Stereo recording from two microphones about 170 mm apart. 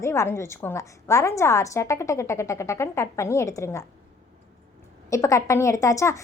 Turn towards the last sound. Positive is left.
turn(degrees=20)  # may be behind; listen again after turning